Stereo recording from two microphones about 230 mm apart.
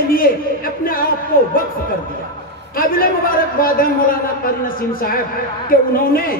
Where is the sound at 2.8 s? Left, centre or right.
Left.